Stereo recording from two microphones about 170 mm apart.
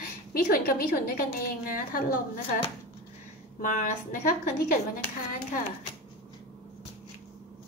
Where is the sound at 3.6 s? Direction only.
50° left (ahead or behind).